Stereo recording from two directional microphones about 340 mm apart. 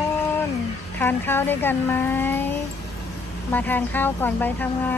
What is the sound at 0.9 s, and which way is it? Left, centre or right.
Speech, centre.